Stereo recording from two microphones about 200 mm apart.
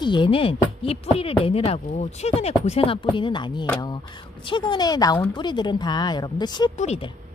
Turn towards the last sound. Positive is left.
turn(degrees=30)  # may be behind; listen again after turning